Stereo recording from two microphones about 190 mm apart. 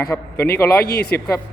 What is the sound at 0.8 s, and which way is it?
Speech, 55° left (ahead or behind).